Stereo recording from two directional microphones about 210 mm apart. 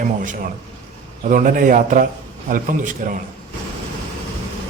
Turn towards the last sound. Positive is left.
turn(degrees=-40)  # may be behind; listen again after turning